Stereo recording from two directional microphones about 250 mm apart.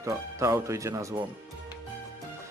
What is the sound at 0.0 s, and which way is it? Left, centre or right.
Speech, centre.